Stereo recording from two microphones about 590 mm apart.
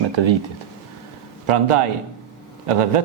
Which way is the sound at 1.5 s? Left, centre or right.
Right.